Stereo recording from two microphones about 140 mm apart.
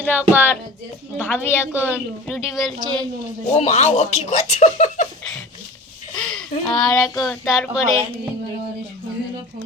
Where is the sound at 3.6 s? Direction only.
55° left (ahead or behind).